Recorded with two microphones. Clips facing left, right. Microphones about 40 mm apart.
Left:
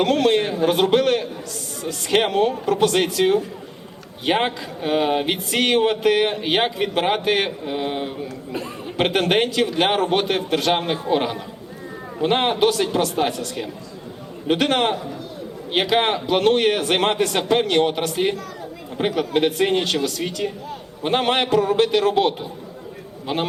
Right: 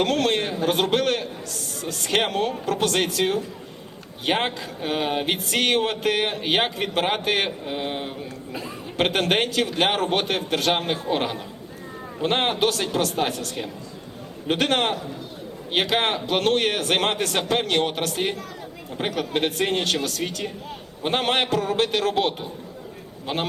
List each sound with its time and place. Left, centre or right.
0.0 s a man's voice: centre
8.5 s a man's voice: centre
14.4 s a man's voice: centre
19.5 s a man's voice: centre